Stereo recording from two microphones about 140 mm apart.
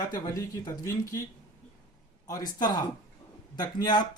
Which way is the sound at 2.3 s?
25° left (ahead or behind).